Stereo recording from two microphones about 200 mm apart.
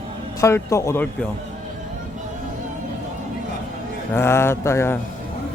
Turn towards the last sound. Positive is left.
turn(degrees=15)  # may be behind; listen again after turning